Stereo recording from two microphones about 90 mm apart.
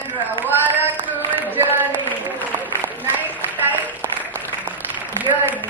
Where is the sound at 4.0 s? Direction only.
20° left (ahead or behind).